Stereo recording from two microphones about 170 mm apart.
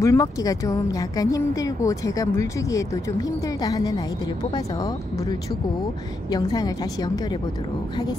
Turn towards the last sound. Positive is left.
turn(degrees=20)  # may be behind; listen again after turning